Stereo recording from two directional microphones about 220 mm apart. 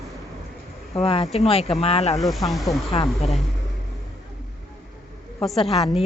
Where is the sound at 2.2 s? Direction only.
Centre (ahead or behind).